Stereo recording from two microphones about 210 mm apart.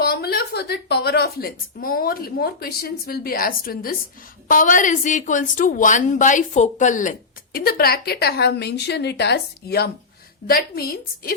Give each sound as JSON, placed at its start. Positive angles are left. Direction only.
{"t": 0.0, "sound": "a woman's voice", "side_deg": 50}